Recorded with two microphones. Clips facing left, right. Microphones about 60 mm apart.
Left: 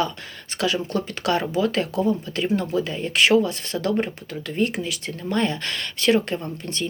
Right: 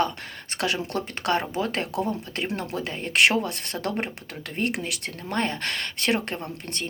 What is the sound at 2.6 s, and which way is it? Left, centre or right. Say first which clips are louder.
Speech: left 6 dB; right.